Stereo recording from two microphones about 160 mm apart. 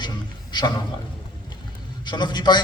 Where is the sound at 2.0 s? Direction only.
30° left (ahead or behind).